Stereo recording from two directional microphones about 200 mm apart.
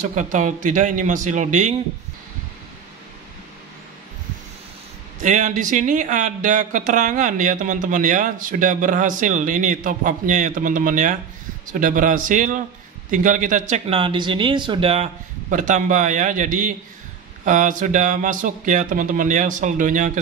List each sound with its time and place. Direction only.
0.0 s speech: 40° right (ahead or behind)
5.2 s speech: 40° right (ahead or behind)
15.5 s speech: 40° right (ahead or behind)